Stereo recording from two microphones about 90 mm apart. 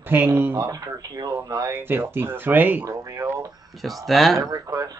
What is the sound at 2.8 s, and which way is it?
Speech, 30° right (ahead or behind).